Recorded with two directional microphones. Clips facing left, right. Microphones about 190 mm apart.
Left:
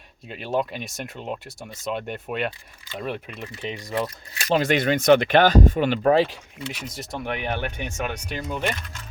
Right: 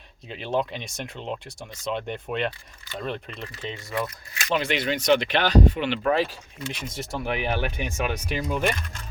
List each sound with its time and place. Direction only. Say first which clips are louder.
0.3 s speech: left 1 dB; 5° left (ahead or behind); by 4.4 s 25° left (ahead or behind)
4.4 s speech: left 5 dB; 40° left (ahead or behind)
6.8 s speech: right 2 dB; centre (ahead or behind)